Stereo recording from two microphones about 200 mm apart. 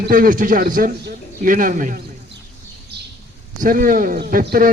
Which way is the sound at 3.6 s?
40° right (ahead or behind).